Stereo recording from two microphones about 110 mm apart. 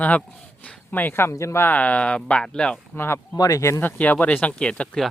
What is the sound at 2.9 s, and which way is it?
Speech, 20° left (ahead or behind).